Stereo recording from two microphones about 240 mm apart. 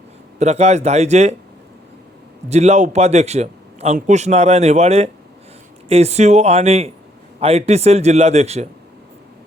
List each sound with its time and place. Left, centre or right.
0.3 s a man's voice: right
2.5 s a man's voice: right